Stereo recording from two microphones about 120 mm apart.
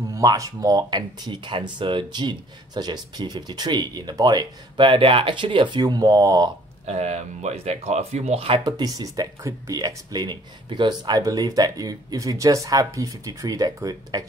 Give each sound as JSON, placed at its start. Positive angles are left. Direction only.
{"t": 0.1, "sound": "speech", "side_deg": -30}
{"t": 6.9, "sound": "speech", "side_deg": -65}